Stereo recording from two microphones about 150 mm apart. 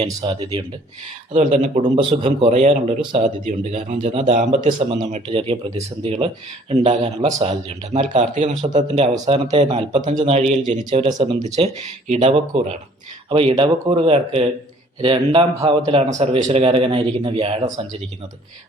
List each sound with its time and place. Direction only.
0.2 s a man's voice: 35° right (ahead or behind)
1.3 s speech: 55° right (ahead or behind)
1.8 s a man's voice: 35° right (ahead or behind)
2.5 s speech: 50° right (ahead or behind)
10.6 s speech: 60° right (ahead or behind)
11.1 s a man's voice: 35° right (ahead or behind)
13.3 s a man's voice: 40° right (ahead or behind)